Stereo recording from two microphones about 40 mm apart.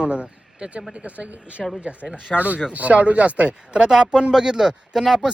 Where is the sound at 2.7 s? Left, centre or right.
Right.